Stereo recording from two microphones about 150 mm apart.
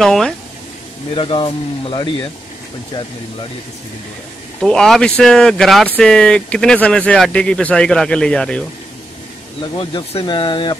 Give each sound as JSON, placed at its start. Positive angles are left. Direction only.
{"t": 0.0, "sound": "speech", "side_deg": 0}
{"t": 1.1, "sound": "speech", "side_deg": 35}
{"t": 4.6, "sound": "speech", "side_deg": 5}
{"t": 9.8, "sound": "speech", "side_deg": 30}